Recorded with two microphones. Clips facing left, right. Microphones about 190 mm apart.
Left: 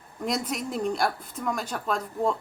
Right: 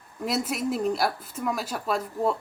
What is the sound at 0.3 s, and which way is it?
Speech, 5° right (ahead or behind).